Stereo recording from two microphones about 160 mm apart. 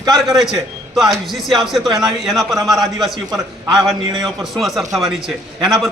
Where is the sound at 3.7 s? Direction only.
Centre (ahead or behind).